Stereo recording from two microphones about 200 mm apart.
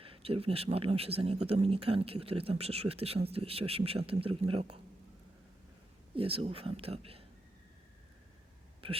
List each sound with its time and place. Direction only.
0.0 s speech: 30° right (ahead or behind)
6.1 s speech: 25° right (ahead or behind)
8.8 s speech: 25° right (ahead or behind)